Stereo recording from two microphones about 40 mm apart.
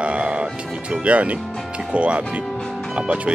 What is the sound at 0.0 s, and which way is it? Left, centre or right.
Music, right.